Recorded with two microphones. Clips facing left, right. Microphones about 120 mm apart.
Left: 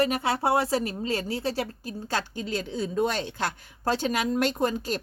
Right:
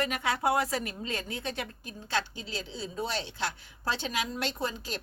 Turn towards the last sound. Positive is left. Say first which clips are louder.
# left 8 dB
turn(degrees=45)  # may be behind; listen again after turning